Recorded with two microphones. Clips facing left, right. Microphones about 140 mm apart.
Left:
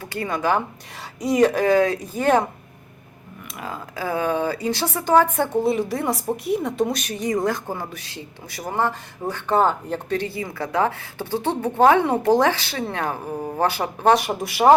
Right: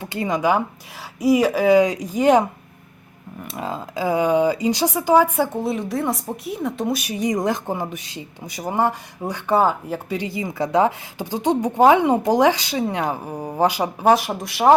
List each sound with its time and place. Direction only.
0.0 s a woman's voice: 20° right (ahead or behind)
3.5 s a woman's voice: 25° right (ahead or behind); by 5.5 s 10° right (ahead or behind)
5.5 s a woman's voice: centre (ahead or behind)